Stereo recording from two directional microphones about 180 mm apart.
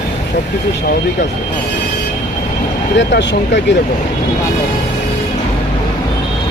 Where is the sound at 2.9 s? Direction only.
85° left.